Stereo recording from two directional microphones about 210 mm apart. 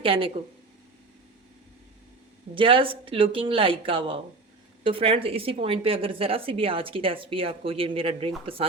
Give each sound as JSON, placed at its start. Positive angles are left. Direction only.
{"t": 0.0, "sound": "a woman's voice", "side_deg": -25}
{"t": 2.6, "sound": "a woman's voice", "side_deg": -25}